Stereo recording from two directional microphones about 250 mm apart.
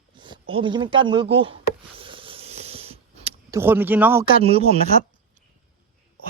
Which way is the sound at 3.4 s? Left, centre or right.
Centre.